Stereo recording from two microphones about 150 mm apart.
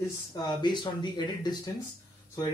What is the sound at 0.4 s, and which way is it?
A man's voice, 30° left (ahead or behind).